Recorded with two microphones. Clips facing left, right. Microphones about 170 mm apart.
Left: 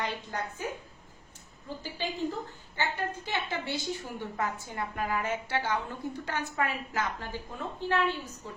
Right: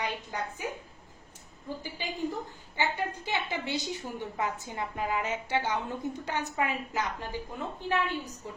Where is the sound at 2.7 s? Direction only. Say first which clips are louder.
Right 1 dB; 15° right (ahead or behind).